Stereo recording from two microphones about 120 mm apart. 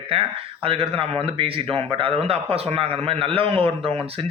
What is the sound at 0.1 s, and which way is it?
Speech, 50° right (ahead or behind).